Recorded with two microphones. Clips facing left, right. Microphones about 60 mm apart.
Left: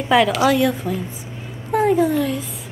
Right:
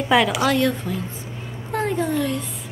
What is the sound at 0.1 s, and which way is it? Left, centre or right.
A woman's voice, centre.